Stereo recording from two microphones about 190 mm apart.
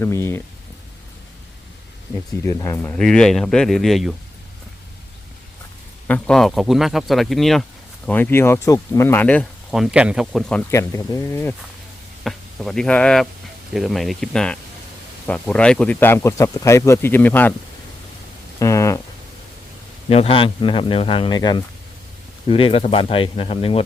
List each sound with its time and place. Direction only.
0.0 s speech: 15° left (ahead or behind)
2.4 s speech: 15° left (ahead or behind); by 4.1 s centre (ahead or behind)
6.1 s speech: 5° left (ahead or behind)
9.7 s speech: 5° right (ahead or behind); by 11.5 s 15° left (ahead or behind)
12.2 s speech: centre (ahead or behind)
18.6 s speech: 15° left (ahead or behind)
20.1 s speech: 30° left (ahead or behind)